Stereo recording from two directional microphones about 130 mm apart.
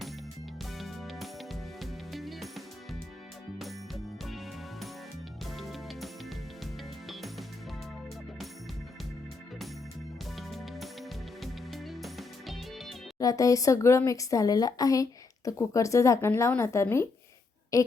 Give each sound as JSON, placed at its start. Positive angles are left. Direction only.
{"t": 0.8, "sound": "music", "side_deg": 0}
{"t": 7.1, "sound": "music", "side_deg": 0}
{"t": 10.3, "sound": "music", "side_deg": 0}
{"t": 13.1, "sound": "speech", "side_deg": 25}